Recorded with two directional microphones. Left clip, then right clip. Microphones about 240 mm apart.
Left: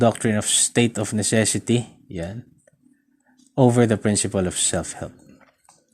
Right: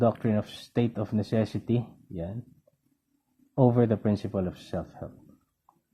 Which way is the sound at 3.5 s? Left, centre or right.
Centre.